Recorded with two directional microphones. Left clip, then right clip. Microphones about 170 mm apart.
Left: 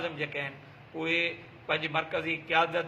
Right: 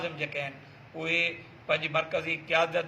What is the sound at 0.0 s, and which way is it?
A man's voice, 15° left (ahead or behind).